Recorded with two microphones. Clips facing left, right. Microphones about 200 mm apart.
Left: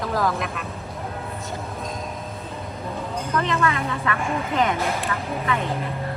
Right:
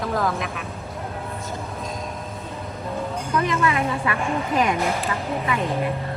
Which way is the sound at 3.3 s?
15° right (ahead or behind).